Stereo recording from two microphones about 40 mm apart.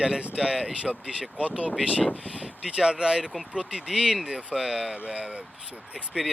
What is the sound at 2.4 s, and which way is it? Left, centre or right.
Speech, centre.